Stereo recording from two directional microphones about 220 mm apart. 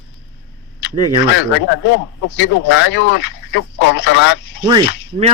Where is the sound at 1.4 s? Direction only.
55° left (ahead or behind).